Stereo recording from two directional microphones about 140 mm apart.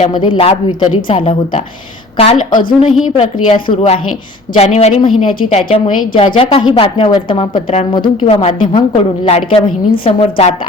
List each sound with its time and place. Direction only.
0.1 s a woman's voice: 35° left (ahead or behind)
7.5 s a woman's voice: 50° left (ahead or behind)
7.9 s a woman's voice: 35° left (ahead or behind)